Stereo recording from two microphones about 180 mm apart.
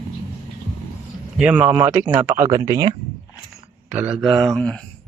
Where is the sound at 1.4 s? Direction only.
5° right (ahead or behind).